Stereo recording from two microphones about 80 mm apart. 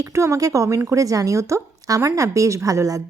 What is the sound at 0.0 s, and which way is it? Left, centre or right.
Speech, right.